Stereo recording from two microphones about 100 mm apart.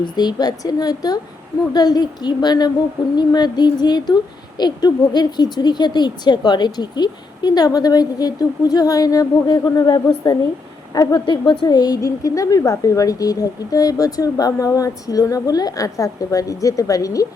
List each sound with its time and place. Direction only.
0.0 s a woman's voice: 45° left (ahead or behind)